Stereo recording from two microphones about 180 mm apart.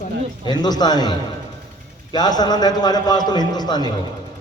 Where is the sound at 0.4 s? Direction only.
20° left (ahead or behind).